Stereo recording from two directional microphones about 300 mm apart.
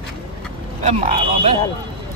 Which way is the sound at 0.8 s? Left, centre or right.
Centre.